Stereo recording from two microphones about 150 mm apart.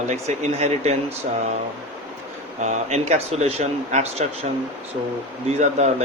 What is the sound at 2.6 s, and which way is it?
A man's voice, 45° right (ahead or behind).